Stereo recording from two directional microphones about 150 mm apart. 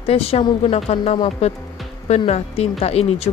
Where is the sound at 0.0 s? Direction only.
40° left (ahead or behind).